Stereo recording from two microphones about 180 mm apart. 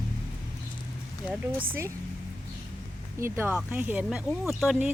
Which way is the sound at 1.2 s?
5° right (ahead or behind).